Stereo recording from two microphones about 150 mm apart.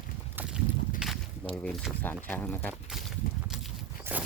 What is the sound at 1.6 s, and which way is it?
Speech, 5° left (ahead or behind).